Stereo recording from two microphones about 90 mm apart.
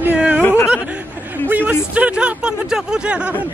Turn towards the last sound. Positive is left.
turn(degrees=-10)  # may be behind; listen again after turning